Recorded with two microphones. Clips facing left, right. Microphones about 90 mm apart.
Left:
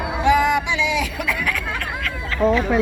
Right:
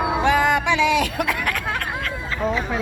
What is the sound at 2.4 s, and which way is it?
Speech, centre (ahead or behind).